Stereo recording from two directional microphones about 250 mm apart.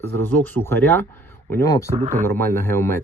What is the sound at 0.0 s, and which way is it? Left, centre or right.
Speech, centre.